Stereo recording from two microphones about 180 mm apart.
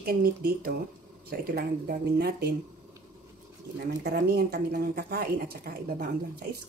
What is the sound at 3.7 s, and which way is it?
Speech, 60° right (ahead or behind).